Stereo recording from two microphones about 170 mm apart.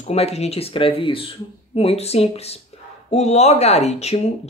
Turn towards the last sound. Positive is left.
turn(degrees=40)  # may be behind; listen again after turning